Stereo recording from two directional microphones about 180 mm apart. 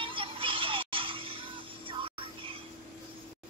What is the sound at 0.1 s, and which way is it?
Music, 30° right (ahead or behind).